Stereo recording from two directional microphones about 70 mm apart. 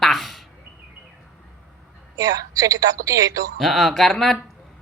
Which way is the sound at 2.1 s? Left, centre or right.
Right.